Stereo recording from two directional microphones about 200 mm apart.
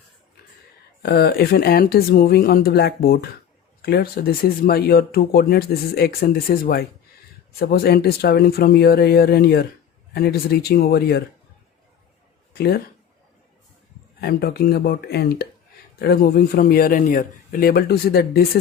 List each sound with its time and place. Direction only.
1.0 s speech: 55° left (ahead or behind)
12.5 s a woman's voice: 50° left (ahead or behind)
14.2 s speech: 50° left (ahead or behind)